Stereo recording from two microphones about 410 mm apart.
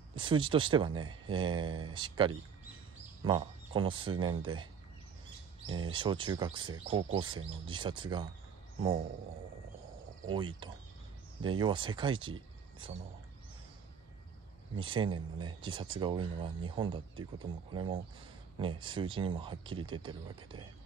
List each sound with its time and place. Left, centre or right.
0.1 s speech: centre
5.9 s speech: centre
10.3 s speech: centre
14.8 s speech: centre